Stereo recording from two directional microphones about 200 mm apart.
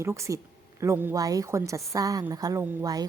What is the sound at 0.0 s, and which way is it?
A woman's voice, 15° right (ahead or behind).